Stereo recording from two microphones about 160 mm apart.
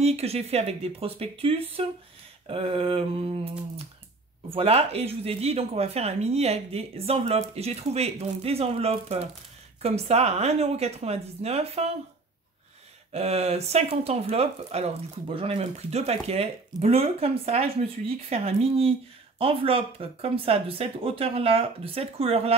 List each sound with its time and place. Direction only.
0.0 s speech: 40° right (ahead or behind)
13.1 s speech: 40° right (ahead or behind)